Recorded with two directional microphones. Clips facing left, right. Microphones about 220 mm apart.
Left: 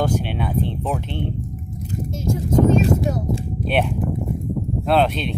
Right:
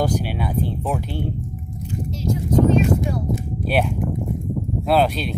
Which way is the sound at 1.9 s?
50° left (ahead or behind).